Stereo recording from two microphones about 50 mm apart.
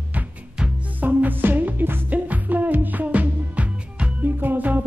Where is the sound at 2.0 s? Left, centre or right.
Right.